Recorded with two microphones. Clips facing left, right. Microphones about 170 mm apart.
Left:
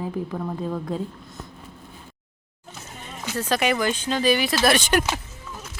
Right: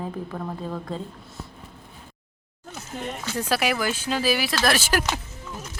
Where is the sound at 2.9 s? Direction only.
85° right.